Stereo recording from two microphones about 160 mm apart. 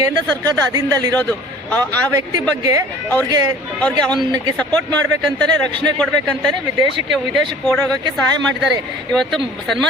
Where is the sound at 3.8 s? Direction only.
5° left (ahead or behind).